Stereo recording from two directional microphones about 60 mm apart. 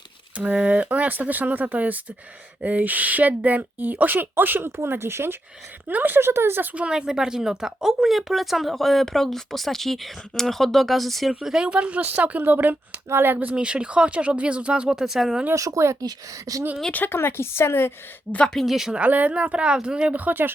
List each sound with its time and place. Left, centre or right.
0.3 s speech: right
6.7 s speech: centre
11.3 s speech: centre; by 13.6 s right
13.6 s speech: centre
15.5 s speech: right
16.0 s a woman's voice: right
16.9 s speech: left
17.2 s a woman's voice: left
18.4 s speech: centre
18.9 s speech: right